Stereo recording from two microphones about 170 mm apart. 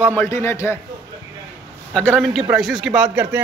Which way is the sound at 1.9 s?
5° left (ahead or behind).